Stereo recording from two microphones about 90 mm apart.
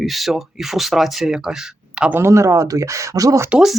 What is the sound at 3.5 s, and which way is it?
Speech, 10° right (ahead or behind).